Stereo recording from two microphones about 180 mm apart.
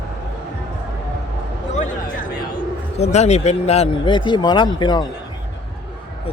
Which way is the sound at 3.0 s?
40° left (ahead or behind).